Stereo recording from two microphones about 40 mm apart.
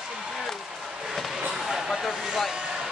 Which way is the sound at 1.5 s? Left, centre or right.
Centre.